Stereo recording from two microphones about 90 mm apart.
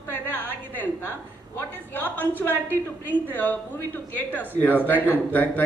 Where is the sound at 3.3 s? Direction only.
20° left (ahead or behind).